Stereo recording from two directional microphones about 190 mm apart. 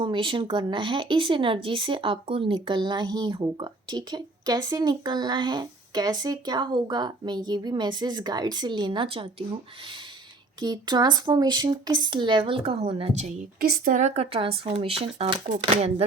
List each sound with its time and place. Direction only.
0.0 s speech: 25° right (ahead or behind)
10.6 s speech: 20° right (ahead or behind)
13.6 s speech: 55° right (ahead or behind); by 16.0 s 35° right (ahead or behind)